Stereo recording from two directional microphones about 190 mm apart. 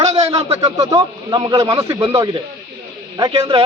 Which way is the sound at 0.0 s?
35° right (ahead or behind).